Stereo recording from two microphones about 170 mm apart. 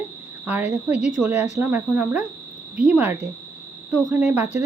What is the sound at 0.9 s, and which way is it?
Speech, 45° left (ahead or behind).